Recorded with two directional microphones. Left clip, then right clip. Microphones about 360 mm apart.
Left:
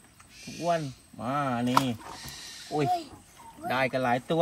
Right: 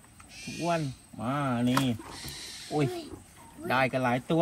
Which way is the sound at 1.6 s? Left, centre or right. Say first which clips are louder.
Left 3 dB; centre.